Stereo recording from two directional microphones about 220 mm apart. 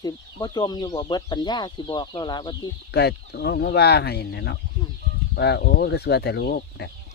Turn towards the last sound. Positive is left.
turn(degrees=45)  # may be behind; listen again after turning